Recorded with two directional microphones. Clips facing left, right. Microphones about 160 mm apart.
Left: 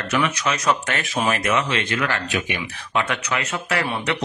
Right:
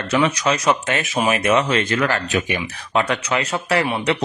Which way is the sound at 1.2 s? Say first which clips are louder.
Right 2 dB; 10° right (ahead or behind).